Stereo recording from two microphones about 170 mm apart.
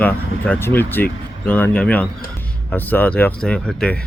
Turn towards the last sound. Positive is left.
turn(degrees=5)  # may be behind; listen again after turning